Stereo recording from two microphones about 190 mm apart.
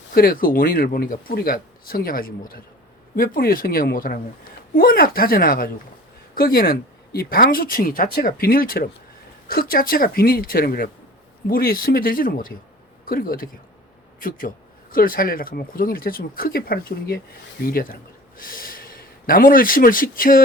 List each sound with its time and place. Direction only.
0.1 s speech: 50° left (ahead or behind)